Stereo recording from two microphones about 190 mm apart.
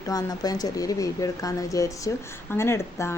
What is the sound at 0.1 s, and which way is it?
A woman's voice, 20° left (ahead or behind).